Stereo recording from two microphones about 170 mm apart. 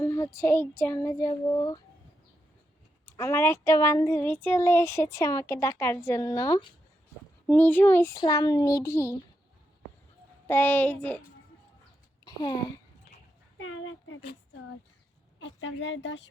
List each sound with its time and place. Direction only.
0.0 s speech: 15° left (ahead or behind)
3.1 s speech: 15° left (ahead or behind)
7.4 s speech: 10° left (ahead or behind)
10.4 s speech: 10° left (ahead or behind)
12.2 s speech: 25° left (ahead or behind)
15.6 s a woman's voice: 90° left